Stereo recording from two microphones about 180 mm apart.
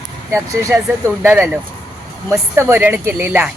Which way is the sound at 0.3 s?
15° right (ahead or behind).